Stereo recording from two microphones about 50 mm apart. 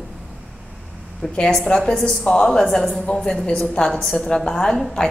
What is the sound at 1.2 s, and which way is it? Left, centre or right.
A woman's voice, centre.